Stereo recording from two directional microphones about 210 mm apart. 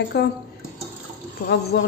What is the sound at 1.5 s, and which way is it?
Speech, 50° left (ahead or behind).